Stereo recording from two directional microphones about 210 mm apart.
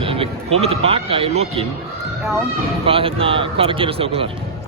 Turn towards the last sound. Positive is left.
turn(degrees=-25)  # may be behind; listen again after turning